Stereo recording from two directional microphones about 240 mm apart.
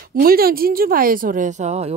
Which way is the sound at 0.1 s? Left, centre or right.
Right.